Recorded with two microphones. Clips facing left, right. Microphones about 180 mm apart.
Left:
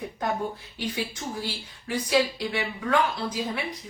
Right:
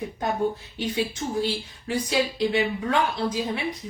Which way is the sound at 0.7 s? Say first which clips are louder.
Right 4 dB; 25° right (ahead or behind).